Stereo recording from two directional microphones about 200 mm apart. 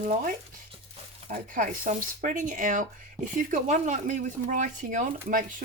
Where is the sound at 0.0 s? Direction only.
40° right (ahead or behind).